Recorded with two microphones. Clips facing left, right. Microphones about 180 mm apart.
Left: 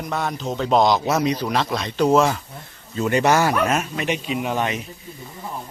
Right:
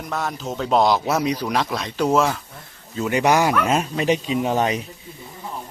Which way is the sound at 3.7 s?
30° right (ahead or behind).